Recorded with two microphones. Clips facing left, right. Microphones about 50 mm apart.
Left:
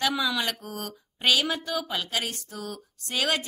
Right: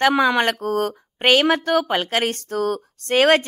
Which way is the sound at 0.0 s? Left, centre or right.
Right.